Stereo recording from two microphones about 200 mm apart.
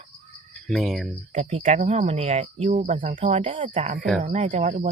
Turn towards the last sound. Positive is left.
turn(degrees=-35)  # may be behind; listen again after turning